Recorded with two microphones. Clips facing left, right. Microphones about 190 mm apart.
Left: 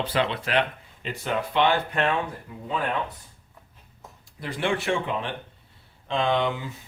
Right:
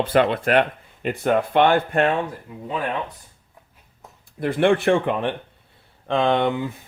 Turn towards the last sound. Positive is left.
turn(degrees=-55)  # may be behind; listen again after turning